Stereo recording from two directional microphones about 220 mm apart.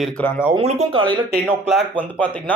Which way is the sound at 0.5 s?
30° right (ahead or behind).